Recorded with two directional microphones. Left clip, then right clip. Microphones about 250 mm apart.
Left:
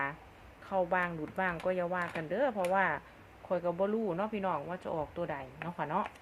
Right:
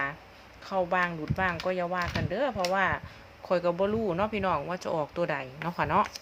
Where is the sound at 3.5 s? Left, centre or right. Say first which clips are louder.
Right 5 dB; centre.